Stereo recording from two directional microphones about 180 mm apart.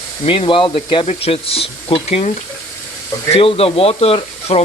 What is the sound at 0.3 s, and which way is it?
Speech, 30° left (ahead or behind).